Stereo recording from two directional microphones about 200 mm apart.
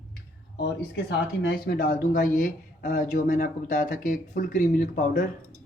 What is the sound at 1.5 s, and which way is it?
Speech, 45° left (ahead or behind).